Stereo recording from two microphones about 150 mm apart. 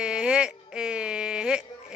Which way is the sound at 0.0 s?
5° right (ahead or behind).